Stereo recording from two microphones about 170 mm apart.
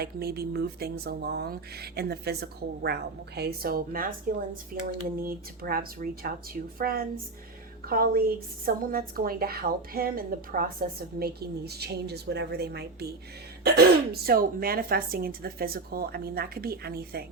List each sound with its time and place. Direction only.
0.0 s a woman's voice: 65° right (ahead or behind)